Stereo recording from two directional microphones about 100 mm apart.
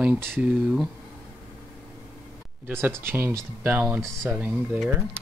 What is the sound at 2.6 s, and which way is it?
Speech, 20° right (ahead or behind).